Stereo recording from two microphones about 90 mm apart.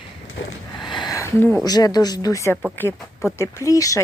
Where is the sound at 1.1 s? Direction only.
35° left (ahead or behind).